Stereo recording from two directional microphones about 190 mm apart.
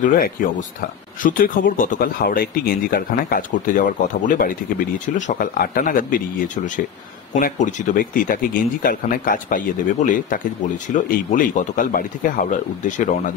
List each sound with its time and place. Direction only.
0.0 s speech: 45° left (ahead or behind)